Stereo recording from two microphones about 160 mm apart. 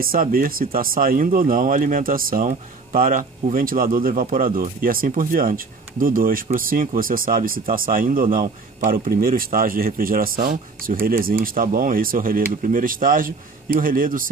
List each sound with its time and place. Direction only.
0.0 s speech: 65° right (ahead or behind)